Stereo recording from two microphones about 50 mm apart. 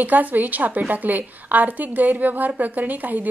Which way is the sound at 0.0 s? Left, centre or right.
Right.